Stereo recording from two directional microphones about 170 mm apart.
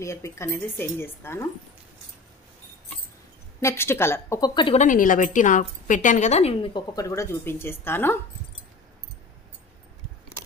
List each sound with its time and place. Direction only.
0.0 s speech: 15° left (ahead or behind)
3.6 s speech: 15° left (ahead or behind)
4.7 s a woman's voice: 50° left (ahead or behind); by 6.8 s 35° left (ahead or behind)
7.0 s speech: 20° left (ahead or behind)